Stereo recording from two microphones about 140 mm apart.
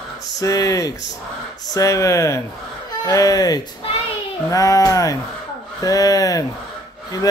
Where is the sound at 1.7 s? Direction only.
25° left (ahead or behind).